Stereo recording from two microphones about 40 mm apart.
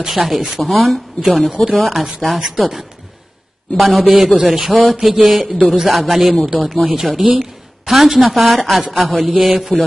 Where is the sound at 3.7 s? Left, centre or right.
Centre.